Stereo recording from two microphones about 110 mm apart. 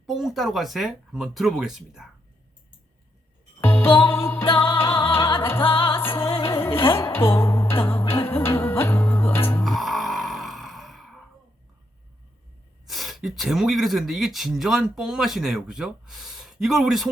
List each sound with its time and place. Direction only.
0.0 s speech: centre (ahead or behind)
3.6 s music: 20° left (ahead or behind)
4.4 s music: 45° left (ahead or behind)
5.4 s music: 20° left (ahead or behind)
5.6 s music: 50° left (ahead or behind)
6.4 s music: 25° left (ahead or behind)
9.6 s music: centre (ahead or behind)
12.8 s speech: centre (ahead or behind)